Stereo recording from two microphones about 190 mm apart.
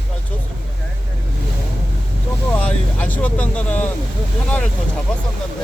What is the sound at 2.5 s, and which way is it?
Vehicle, 5° left (ahead or behind).